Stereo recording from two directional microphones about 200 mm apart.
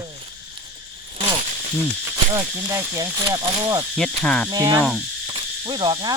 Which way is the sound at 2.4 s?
15° right (ahead or behind).